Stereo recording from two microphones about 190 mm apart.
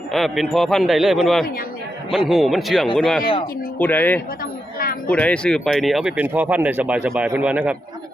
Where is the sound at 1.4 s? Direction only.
50° left (ahead or behind).